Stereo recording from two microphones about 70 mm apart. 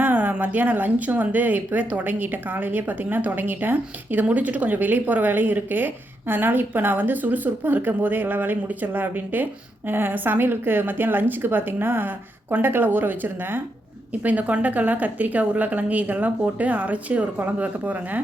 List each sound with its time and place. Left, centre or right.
0.0 s speech: right